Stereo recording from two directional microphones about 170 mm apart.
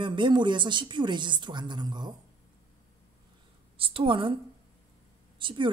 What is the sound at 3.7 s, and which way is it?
Speech, 30° right (ahead or behind).